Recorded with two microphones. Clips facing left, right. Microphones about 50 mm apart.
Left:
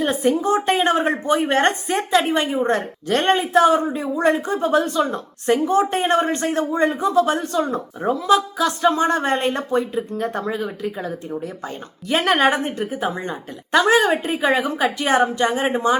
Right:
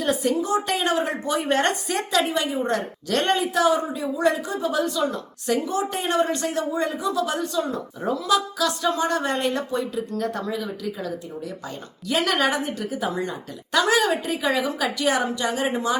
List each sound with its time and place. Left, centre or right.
0.0 s a woman's voice: left